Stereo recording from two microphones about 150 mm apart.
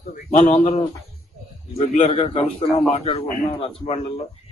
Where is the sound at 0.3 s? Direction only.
45° left (ahead or behind).